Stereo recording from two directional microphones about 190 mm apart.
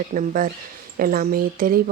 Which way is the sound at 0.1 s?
45° right (ahead or behind).